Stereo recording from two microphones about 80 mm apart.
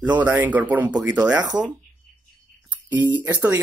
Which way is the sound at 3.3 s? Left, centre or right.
Right.